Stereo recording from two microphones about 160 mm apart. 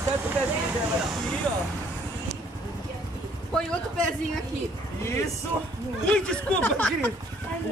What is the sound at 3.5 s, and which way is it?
Speech, 5° left (ahead or behind).